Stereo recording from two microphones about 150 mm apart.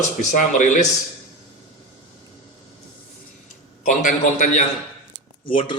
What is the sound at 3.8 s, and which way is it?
Speech, 55° left (ahead or behind).